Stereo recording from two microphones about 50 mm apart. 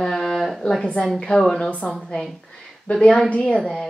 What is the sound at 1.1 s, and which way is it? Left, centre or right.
Speech, centre.